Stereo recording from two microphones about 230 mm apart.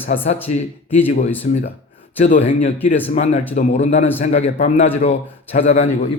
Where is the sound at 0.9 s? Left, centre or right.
Left.